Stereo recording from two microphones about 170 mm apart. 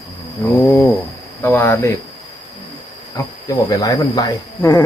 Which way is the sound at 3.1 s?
20° left (ahead or behind).